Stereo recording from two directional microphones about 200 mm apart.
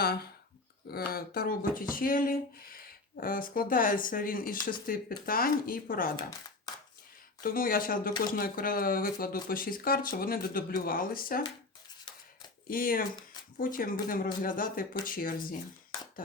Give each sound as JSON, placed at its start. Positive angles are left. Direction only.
{"t": 0.0, "sound": "a sound", "side_deg": 50}
{"t": 0.9, "sound": "speech", "side_deg": 50}
{"t": 7.4, "sound": "speech", "side_deg": 45}
{"t": 12.6, "sound": "speech", "side_deg": 45}